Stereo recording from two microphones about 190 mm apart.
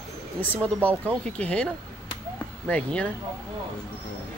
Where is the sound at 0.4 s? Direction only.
10° left (ahead or behind).